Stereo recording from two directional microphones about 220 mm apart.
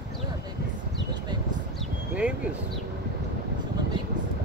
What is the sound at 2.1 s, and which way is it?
Speech, 5° right (ahead or behind).